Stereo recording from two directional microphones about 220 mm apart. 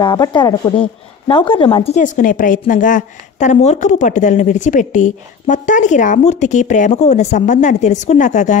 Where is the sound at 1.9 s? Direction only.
35° left (ahead or behind).